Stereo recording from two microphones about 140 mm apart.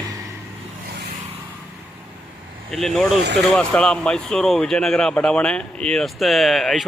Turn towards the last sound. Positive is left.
turn(degrees=0)  # may be behind; listen again after turning